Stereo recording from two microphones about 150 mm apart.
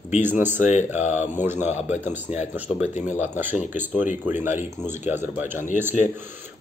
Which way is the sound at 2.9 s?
50° left (ahead or behind).